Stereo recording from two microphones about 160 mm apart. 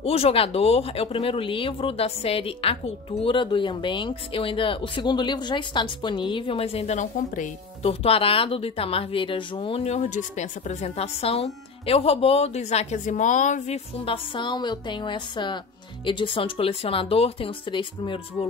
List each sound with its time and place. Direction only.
0.0 s speech: 40° left (ahead or behind)
13.9 s a woman's voice: 35° left (ahead or behind)